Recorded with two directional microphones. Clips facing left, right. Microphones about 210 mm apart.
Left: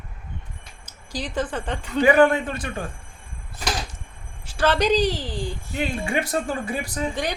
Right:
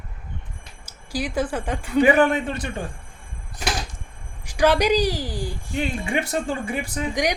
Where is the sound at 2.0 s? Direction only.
20° right (ahead or behind).